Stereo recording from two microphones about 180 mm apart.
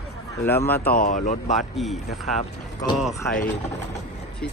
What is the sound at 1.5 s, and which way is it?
Speech, centre (ahead or behind).